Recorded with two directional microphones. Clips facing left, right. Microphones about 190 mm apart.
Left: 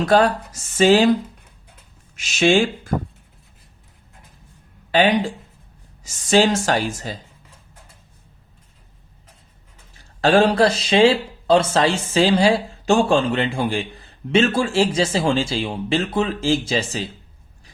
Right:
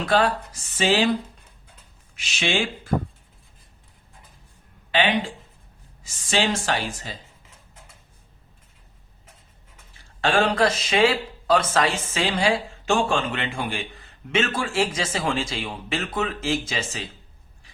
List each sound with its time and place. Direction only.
0.0 s speech: 45° left (ahead or behind)
2.1 s speech: 45° left (ahead or behind)
4.9 s speech: 40° left (ahead or behind)
10.0 s speech: 40° left (ahead or behind)